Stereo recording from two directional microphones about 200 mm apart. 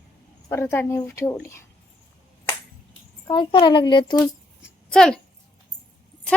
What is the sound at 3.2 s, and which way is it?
Speech, 20° left (ahead or behind).